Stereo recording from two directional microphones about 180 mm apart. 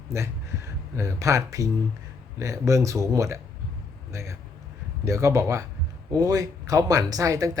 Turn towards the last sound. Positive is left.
turn(degrees=-20)  # may be behind; listen again after turning